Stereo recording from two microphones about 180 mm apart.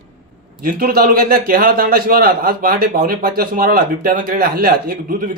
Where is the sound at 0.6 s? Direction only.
55° right (ahead or behind).